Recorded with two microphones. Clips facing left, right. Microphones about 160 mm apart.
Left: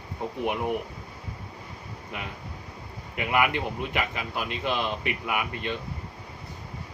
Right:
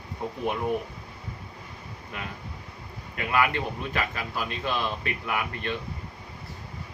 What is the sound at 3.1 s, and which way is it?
Speech, 20° left (ahead or behind).